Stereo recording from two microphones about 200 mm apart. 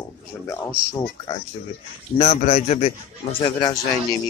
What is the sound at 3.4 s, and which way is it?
Speech, 20° left (ahead or behind).